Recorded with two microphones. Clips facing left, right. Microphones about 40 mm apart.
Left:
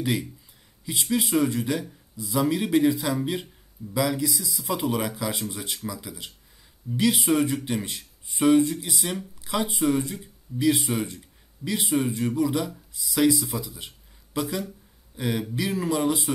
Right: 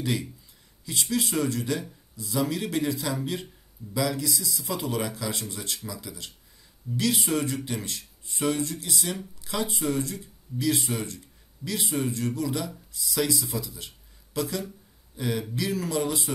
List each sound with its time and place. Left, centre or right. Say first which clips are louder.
0.0 s speech: left 2 dB; centre